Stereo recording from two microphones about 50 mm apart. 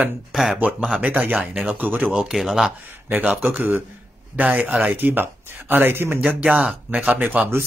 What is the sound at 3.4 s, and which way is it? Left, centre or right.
Speech, right.